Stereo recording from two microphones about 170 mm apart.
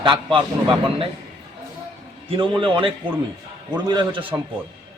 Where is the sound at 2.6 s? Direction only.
30° right (ahead or behind).